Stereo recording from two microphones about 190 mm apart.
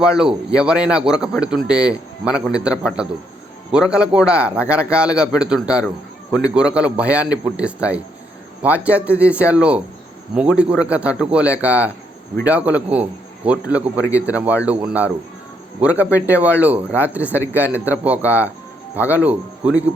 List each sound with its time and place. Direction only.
0.0 s a man's voice: 5° right (ahead or behind)